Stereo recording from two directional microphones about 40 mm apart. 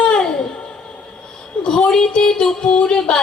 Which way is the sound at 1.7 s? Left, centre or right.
Centre.